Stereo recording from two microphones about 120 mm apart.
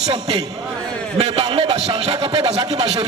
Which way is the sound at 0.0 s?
55° right (ahead or behind).